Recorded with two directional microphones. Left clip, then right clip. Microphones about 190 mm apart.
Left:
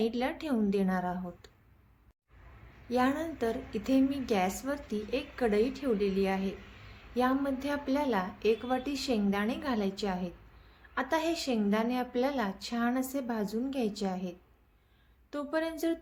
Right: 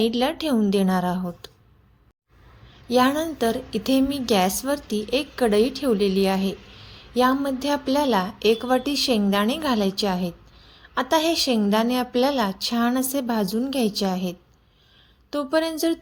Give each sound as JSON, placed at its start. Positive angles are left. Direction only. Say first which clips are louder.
{"t": 0.0, "sound": "a woman's voice", "louder": "right 10 dB", "side_deg": -40}
{"t": 2.9, "sound": "a woman's voice", "louder": "right 10 dB", "side_deg": -40}